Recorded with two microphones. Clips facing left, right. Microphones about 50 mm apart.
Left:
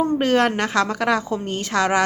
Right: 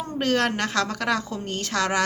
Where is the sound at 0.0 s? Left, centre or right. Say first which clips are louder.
Left 6 dB; centre.